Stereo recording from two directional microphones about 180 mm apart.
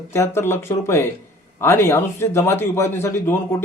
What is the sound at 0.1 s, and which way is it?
A man's voice, 15° left (ahead or behind).